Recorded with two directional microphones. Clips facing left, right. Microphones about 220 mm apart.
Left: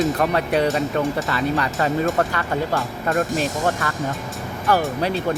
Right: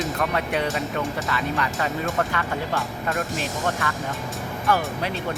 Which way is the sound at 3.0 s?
45° left (ahead or behind).